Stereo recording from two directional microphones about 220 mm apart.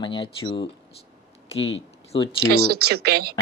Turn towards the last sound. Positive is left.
turn(degrees=-45)  # may be behind; listen again after turning